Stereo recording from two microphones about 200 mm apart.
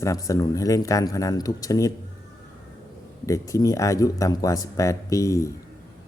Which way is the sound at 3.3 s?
15° left (ahead or behind).